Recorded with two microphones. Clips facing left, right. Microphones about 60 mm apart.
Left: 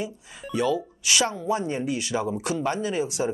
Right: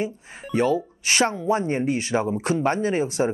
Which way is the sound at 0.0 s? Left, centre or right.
Right.